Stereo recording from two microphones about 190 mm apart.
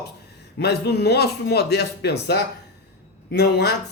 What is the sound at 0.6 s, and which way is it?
Speech, 60° left (ahead or behind).